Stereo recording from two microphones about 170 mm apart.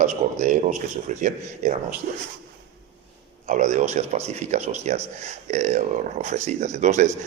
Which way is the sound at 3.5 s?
45° right (ahead or behind).